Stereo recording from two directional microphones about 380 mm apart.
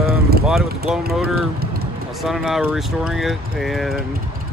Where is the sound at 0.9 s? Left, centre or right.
Centre.